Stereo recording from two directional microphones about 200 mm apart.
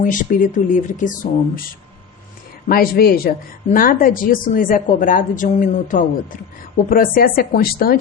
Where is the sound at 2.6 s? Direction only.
50° left (ahead or behind).